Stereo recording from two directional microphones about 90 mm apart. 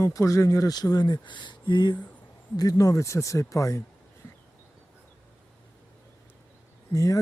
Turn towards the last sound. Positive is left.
turn(degrees=40)  # may be behind; listen again after turning